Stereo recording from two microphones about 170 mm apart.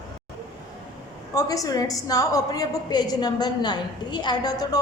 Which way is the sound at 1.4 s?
20° left (ahead or behind).